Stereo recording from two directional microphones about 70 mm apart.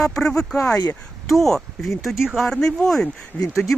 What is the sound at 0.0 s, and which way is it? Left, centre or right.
Speech, centre.